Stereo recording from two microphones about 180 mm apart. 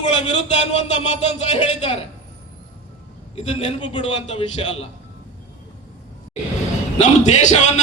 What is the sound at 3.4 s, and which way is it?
A man's voice, 35° left (ahead or behind).